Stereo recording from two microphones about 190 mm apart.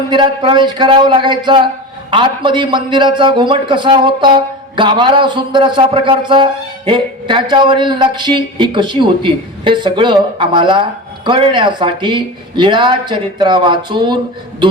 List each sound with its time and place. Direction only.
0.1 s a man's voice: 25° right (ahead or behind)